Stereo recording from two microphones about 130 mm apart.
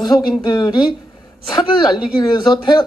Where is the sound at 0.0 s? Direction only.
35° left (ahead or behind).